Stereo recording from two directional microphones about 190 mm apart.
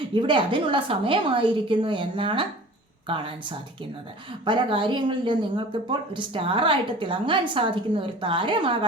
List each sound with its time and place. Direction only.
0.1 s speech: 25° right (ahead or behind)